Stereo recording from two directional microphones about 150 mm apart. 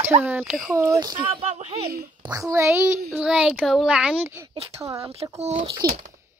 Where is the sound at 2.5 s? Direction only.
15° right (ahead or behind).